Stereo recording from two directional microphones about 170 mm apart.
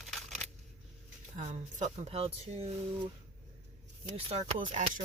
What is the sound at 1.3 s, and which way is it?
Speech, 45° right (ahead or behind).